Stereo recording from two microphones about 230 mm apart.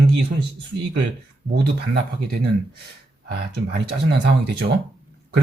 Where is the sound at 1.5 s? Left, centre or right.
Right.